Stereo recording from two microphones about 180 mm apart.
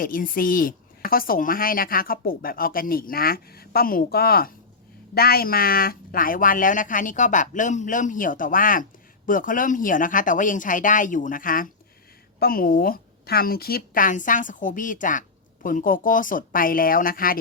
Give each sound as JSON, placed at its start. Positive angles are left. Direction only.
{"t": 0.0, "sound": "speech", "side_deg": 50}